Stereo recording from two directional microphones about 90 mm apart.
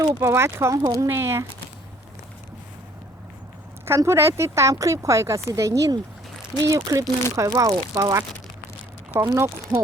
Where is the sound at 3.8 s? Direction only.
30° right (ahead or behind).